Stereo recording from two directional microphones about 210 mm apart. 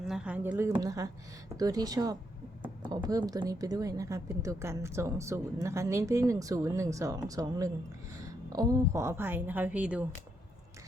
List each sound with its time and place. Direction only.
0.1 s a woman's voice: 5° right (ahead or behind)